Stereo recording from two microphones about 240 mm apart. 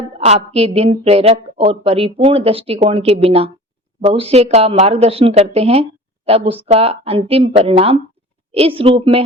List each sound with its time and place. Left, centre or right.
0.2 s a woman's voice: right